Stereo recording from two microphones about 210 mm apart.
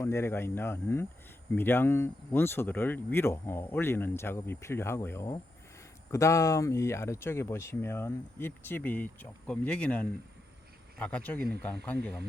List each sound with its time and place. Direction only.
0.0 s speech: 15° left (ahead or behind)